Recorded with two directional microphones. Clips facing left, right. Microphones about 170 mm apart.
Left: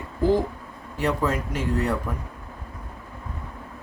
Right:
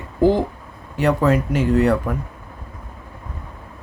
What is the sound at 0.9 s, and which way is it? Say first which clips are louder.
Speech: right 7 dB; 70° right (ahead or behind).